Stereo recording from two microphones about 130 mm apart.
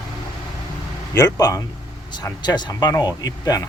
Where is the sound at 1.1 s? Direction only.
25° left (ahead or behind).